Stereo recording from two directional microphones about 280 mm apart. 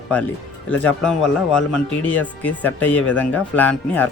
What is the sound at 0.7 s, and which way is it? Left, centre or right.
Speech, centre.